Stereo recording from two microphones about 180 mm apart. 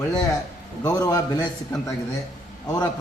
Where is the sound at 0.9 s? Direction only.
15° left (ahead or behind).